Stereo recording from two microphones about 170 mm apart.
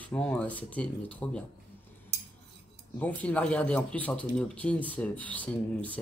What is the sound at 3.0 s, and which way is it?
Speech, 10° left (ahead or behind).